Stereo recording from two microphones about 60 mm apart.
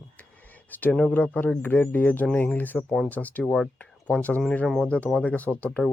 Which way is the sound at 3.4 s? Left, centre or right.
Centre.